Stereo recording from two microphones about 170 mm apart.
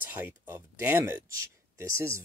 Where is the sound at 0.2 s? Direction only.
15° right (ahead or behind).